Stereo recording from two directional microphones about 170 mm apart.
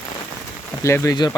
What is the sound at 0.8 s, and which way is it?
Speech, 15° left (ahead or behind).